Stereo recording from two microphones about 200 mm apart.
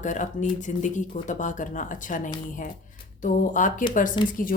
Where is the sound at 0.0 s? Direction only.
40° left (ahead or behind).